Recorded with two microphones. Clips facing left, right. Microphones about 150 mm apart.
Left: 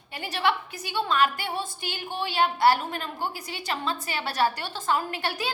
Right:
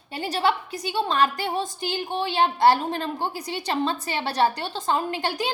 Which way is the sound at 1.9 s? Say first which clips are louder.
Right 5 dB; 25° right (ahead or behind).